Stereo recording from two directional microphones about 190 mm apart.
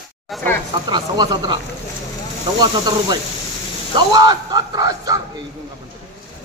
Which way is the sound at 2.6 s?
20° right (ahead or behind).